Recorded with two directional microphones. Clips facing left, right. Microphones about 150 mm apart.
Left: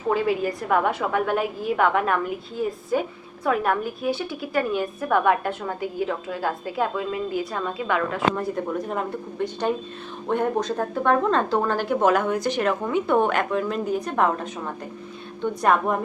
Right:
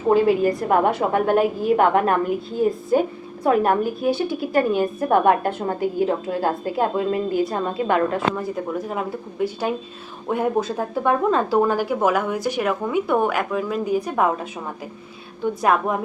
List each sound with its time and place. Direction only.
0.1 s a woman's voice: 40° right (ahead or behind)
8.4 s a woman's voice: centre (ahead or behind)
15.6 s a woman's voice: centre (ahead or behind)